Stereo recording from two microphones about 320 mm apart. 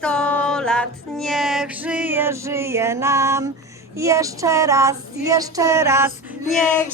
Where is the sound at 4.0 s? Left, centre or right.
Centre.